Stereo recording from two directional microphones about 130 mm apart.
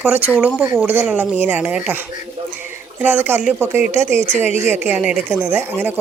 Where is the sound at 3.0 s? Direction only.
15° right (ahead or behind).